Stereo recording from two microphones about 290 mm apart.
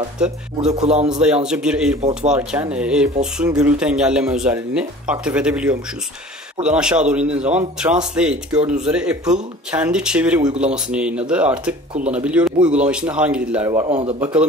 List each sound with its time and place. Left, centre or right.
0.2 s speech: centre
13.8 s speech: right